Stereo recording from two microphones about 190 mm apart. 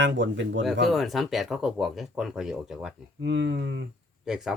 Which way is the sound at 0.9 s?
Centre (ahead or behind).